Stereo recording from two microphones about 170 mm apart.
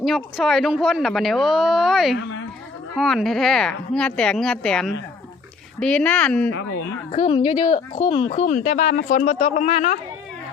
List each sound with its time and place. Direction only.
0.0 s speech: centre (ahead or behind)
2.1 s speech: 90° left
2.9 s speech: centre (ahead or behind)
7.1 s a woman's voice: 30° left (ahead or behind)
8.3 s a woman's voice: 45° left (ahead or behind)